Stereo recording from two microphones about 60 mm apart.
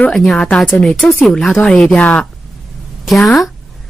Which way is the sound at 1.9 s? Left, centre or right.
Left.